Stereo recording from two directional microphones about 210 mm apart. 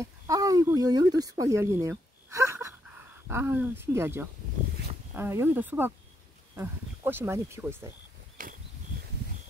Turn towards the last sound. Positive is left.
turn(degrees=-10)  # may be behind; listen again after turning